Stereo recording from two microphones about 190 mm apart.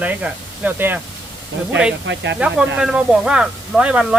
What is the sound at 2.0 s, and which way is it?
Speech, 65° right (ahead or behind).